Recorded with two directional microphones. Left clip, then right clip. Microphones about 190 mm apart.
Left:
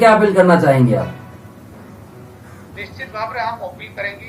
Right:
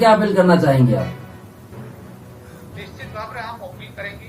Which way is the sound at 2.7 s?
50° left (ahead or behind).